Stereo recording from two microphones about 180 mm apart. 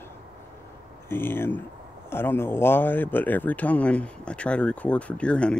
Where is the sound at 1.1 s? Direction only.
10° left (ahead or behind).